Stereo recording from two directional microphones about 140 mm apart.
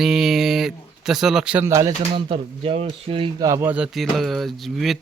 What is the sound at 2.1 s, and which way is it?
Speech, 40° right (ahead or behind).